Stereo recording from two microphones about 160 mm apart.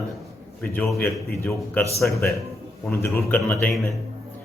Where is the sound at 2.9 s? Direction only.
15° left (ahead or behind).